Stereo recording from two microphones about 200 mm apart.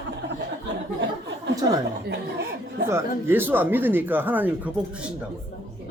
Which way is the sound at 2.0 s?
55° right (ahead or behind).